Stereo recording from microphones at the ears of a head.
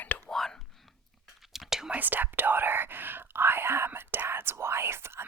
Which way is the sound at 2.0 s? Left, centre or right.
Right.